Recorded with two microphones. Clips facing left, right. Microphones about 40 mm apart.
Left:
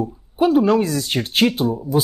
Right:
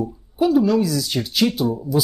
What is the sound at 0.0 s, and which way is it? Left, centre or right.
Speech, left.